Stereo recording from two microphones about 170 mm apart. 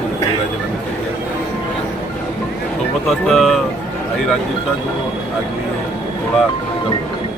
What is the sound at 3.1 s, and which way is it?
Speech, centre (ahead or behind).